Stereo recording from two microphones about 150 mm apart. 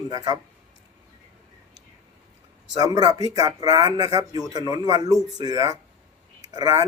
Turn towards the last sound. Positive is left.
turn(degrees=-25)  # may be behind; listen again after turning